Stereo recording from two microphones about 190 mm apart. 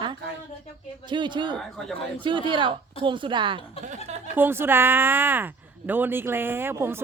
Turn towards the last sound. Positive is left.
turn(degrees=-15)  # may be behind; listen again after turning